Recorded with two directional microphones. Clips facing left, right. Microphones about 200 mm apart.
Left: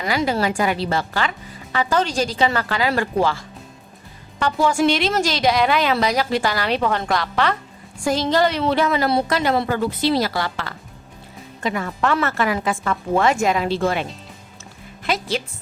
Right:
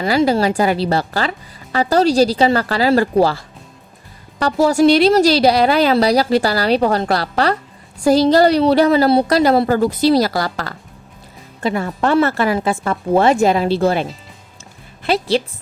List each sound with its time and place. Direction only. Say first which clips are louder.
0.0 s speech: right 6 dB; 30° right (ahead or behind)